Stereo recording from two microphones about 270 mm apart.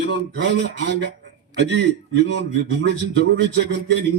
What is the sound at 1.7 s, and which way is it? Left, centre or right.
Speech, right.